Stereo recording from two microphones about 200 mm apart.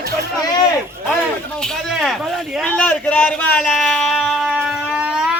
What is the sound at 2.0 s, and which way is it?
A man's voice, centre (ahead or behind).